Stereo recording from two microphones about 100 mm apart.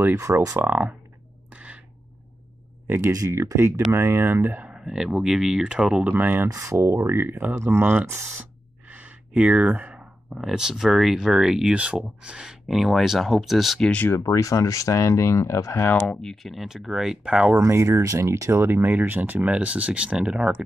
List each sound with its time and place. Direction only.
0.2 s speech: 35° right (ahead or behind)
0.7 s speech: 20° right (ahead or behind)
1.5 s a sound: 15° right (ahead or behind)
3.1 s speech: 30° right (ahead or behind); by 6.1 s 5° right (ahead or behind)
6.1 s speech: 20° right (ahead or behind)
6.5 s speech: 30° right (ahead or behind)
8.8 s sigh: 15° right (ahead or behind)
10.3 s speech: 5° right (ahead or behind)
14.0 s speech: 30° left (ahead or behind)
15.9 s speech: 10° left (ahead or behind); by 17.6 s 10° right (ahead or behind)
17.6 s speech: 25° right (ahead or behind); by 20.5 s 5° right (ahead or behind)